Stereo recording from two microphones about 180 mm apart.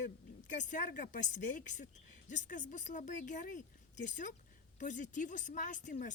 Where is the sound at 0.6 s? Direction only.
45° left (ahead or behind).